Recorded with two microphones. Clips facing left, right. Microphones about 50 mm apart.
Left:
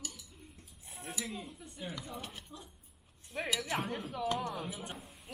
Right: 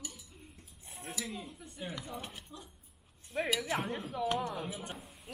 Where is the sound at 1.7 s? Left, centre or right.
Centre.